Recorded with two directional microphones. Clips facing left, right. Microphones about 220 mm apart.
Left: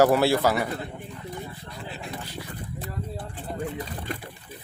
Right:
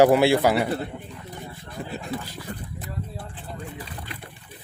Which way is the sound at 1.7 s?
45° right (ahead or behind).